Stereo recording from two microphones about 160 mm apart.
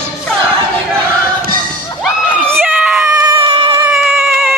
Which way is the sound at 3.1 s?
20° right (ahead or behind).